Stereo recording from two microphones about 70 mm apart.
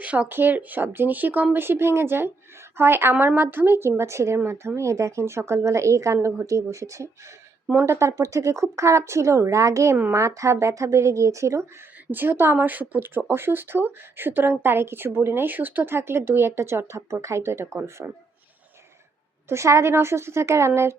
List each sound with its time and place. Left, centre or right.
0.0 s speech: centre
0.3 s a woman's voice: right
12.1 s a woman's voice: right
19.5 s a woman's voice: right